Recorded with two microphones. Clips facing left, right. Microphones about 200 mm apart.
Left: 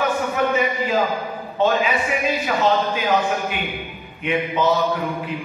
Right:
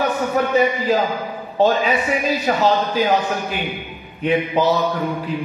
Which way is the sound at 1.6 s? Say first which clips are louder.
Right 3 dB; 35° right (ahead or behind).